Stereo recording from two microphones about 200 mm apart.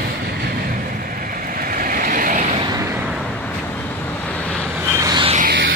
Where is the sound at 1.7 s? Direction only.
45° right (ahead or behind).